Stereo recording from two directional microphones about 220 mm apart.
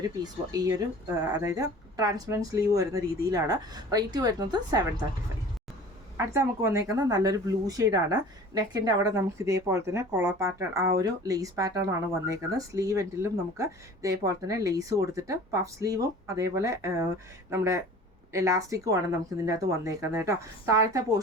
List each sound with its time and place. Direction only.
0.5 s speech: 15° right (ahead or behind)
6.1 s speech: 10° right (ahead or behind)